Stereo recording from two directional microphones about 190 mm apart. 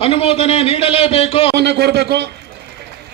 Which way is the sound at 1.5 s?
60° right (ahead or behind).